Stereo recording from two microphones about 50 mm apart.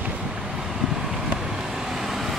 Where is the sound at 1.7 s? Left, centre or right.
Centre.